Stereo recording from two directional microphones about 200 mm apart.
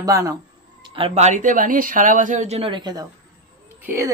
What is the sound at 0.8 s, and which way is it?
Speech, 25° right (ahead or behind).